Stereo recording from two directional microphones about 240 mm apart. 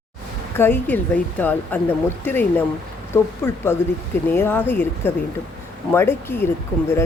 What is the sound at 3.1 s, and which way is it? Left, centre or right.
Speech, centre.